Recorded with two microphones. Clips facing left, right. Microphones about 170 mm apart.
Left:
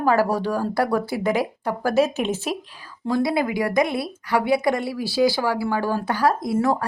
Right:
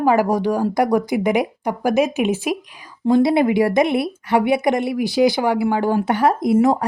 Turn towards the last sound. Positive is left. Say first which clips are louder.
# right 5 dB
turn(degrees=-20)  # may be behind; listen again after turning